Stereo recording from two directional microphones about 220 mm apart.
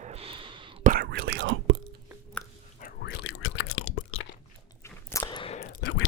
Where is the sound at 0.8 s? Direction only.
40° right (ahead or behind).